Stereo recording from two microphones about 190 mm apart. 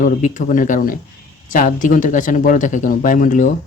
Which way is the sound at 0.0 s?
40° left (ahead or behind).